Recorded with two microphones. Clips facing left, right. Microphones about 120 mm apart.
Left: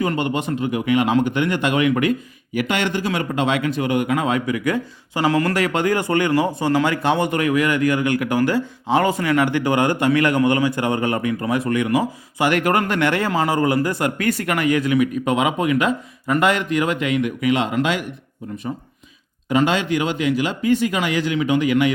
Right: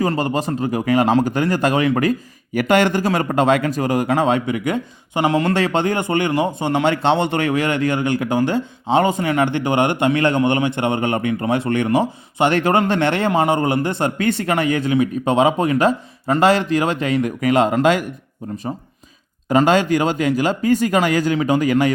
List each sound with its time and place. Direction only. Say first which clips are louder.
0.0 s a man's voice: right 2 dB; 35° right (ahead or behind)
19.5 s speech: right 4 dB; 40° right (ahead or behind)